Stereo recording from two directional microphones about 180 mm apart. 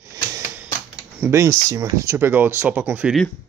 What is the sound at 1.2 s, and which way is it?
Speech, 15° right (ahead or behind).